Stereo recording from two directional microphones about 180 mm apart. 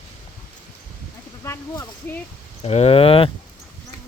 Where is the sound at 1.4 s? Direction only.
15° left (ahead or behind).